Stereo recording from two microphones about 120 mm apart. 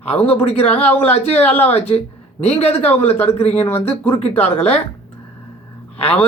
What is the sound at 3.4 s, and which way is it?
Speech, 60° left (ahead or behind).